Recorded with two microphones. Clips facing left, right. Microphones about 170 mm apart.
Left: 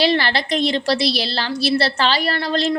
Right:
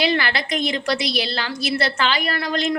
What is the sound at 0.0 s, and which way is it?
A woman's voice, 35° left (ahead or behind).